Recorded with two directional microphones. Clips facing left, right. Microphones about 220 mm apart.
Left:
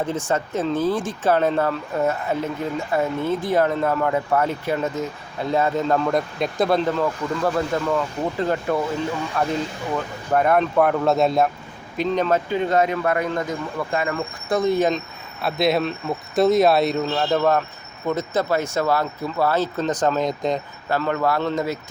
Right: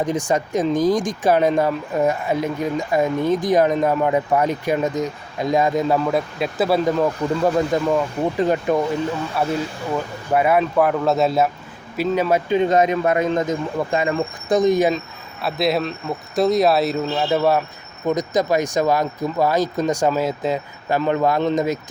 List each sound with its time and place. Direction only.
0.0 s speech: 15° right (ahead or behind)
9.4 s speech: 5° right (ahead or behind)
12.5 s speech: 20° right (ahead or behind)